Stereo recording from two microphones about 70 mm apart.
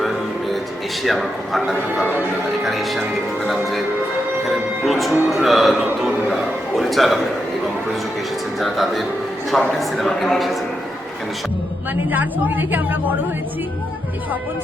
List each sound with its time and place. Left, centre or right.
0.0 s music: centre
1.0 s speech: centre
4.4 s music: centre
5.3 s speech: centre
6.0 s a sound: centre
6.3 s a sound: centre
8.5 s speech: centre
12.1 s a woman's voice: right